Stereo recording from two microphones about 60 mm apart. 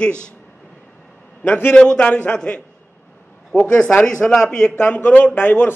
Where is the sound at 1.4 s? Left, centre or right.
Left.